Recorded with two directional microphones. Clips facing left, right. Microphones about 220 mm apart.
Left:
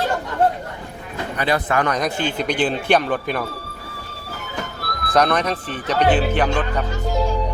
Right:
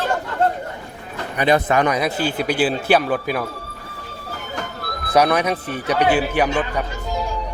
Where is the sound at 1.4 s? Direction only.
20° right (ahead or behind).